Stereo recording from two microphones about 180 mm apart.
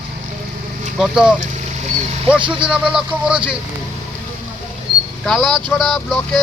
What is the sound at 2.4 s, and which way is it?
Speech, 25° right (ahead or behind).